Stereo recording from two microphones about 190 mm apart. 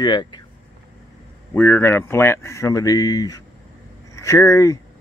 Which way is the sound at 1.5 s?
10° left (ahead or behind).